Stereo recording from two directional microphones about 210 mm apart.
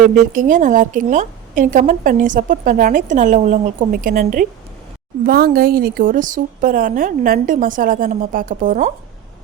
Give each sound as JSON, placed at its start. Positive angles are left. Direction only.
{"t": 0.3, "sound": "a woman's voice", "side_deg": -40}